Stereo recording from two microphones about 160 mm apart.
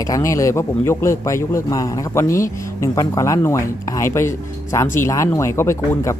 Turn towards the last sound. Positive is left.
turn(degrees=15)  # may be behind; listen again after turning